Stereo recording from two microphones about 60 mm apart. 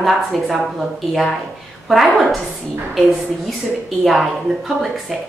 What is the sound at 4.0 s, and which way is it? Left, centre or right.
Speech, centre.